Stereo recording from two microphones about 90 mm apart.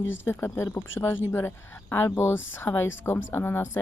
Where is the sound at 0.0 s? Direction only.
25° left (ahead or behind).